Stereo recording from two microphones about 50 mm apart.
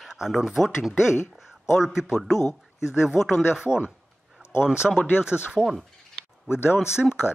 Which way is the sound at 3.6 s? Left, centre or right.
Centre.